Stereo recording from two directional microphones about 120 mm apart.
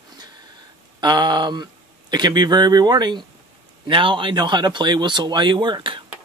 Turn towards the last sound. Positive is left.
turn(degrees=-40)  # may be behind; listen again after turning